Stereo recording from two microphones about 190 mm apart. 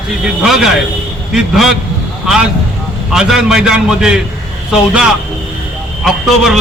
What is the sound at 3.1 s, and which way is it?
A man's voice, 5° right (ahead or behind).